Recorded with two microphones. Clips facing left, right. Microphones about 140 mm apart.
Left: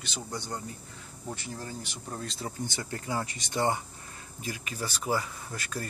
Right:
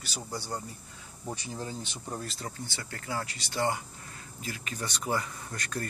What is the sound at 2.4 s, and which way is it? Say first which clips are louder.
Speech: left 4 dB; 20° left (ahead or behind).